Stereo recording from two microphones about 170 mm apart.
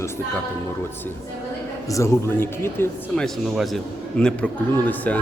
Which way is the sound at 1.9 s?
15° left (ahead or behind).